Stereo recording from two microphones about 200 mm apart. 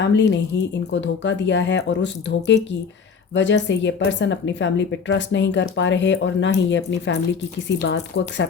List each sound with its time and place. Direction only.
0.0 s speech: 60° left (ahead or behind)